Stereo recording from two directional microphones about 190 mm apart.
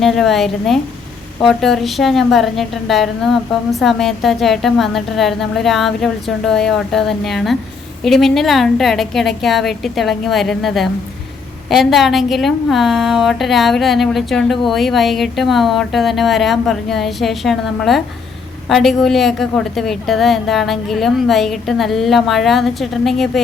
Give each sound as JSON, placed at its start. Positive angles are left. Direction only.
{"t": 0.0, "sound": "a woman's voice", "side_deg": 0}